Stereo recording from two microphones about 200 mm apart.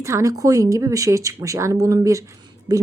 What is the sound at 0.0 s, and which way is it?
Speech, 15° right (ahead or behind).